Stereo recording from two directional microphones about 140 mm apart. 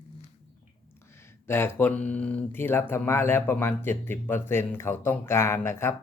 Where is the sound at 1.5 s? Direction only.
15° left (ahead or behind).